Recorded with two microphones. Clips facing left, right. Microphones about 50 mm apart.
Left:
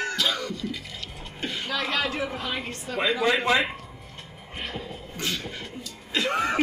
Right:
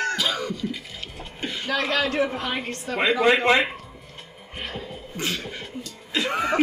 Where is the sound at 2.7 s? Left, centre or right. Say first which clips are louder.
Right 4 dB; right.